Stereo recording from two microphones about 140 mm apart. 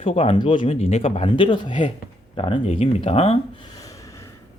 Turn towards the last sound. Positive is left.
turn(degrees=45)  # may be behind; listen again after turning